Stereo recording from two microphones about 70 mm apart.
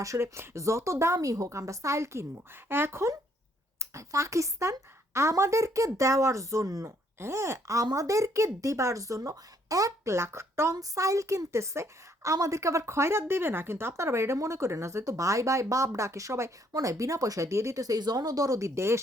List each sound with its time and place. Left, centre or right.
0.0 s speech: right
2.6 s speech: right
3.8 s speech: right